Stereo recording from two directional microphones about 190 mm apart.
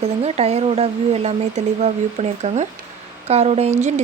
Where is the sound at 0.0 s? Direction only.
35° right (ahead or behind).